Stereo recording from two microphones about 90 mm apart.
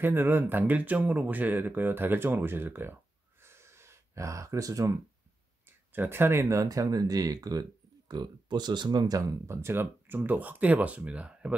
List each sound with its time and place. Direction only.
0.0 s speech: 25° right (ahead or behind)
3.4 s a sound: 30° right (ahead or behind)
5.9 s speech: 25° right (ahead or behind); by 9.4 s 45° right (ahead or behind)
9.5 s speech: 30° right (ahead or behind); by 11.5 s 10° right (ahead or behind)